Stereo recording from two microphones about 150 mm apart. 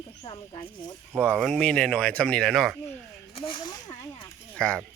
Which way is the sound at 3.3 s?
35° left (ahead or behind).